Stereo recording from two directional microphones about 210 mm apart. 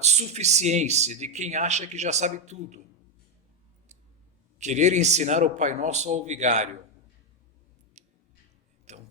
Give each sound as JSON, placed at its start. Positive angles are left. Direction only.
{"t": 0.0, "sound": "speech", "side_deg": -30}
{"t": 4.5, "sound": "speech", "side_deg": -35}
{"t": 8.0, "sound": "scissors", "side_deg": -35}
{"t": 8.9, "sound": "tick-tock", "side_deg": -35}